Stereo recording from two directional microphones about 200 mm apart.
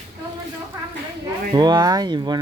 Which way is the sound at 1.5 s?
20° right (ahead or behind).